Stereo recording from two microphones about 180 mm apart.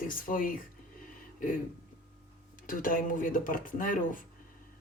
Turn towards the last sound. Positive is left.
turn(degrees=50)  # may be behind; listen again after turning